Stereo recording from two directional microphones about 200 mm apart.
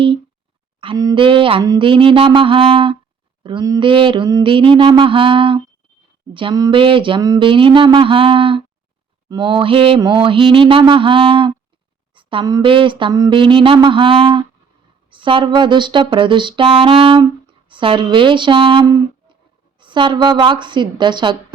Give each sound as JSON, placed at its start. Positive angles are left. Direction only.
{"t": 0.8, "sound": "speech", "side_deg": -20}